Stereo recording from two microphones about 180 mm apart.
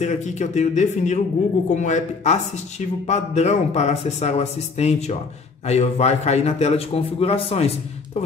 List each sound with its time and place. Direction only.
0.0 s a man's voice: 40° left (ahead or behind)